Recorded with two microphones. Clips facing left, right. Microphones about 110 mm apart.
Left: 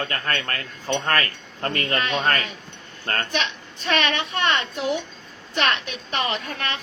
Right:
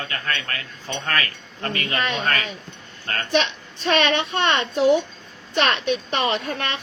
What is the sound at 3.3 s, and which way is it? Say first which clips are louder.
A woman's voice: right 5 dB; 30° right (ahead or behind).